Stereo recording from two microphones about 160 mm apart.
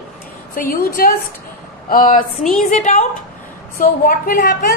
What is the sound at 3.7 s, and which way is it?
A woman's voice, 60° left (ahead or behind).